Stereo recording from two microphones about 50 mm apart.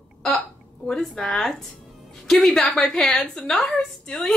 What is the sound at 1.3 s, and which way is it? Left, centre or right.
A woman's voice, centre.